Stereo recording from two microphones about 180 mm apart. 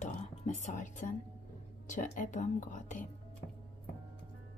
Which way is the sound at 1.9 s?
45° left (ahead or behind).